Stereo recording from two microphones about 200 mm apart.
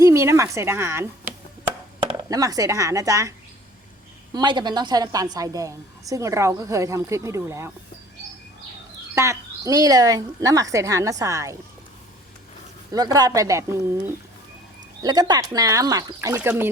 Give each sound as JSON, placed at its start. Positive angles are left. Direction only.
{"t": 0.0, "sound": "speech", "side_deg": -15}
{"t": 4.4, "sound": "a woman's voice", "side_deg": -20}
{"t": 9.1, "sound": "a woman's voice", "side_deg": -15}
{"t": 12.9, "sound": "a woman's voice", "side_deg": -20}
{"t": 15.0, "sound": "a woman's voice", "side_deg": -20}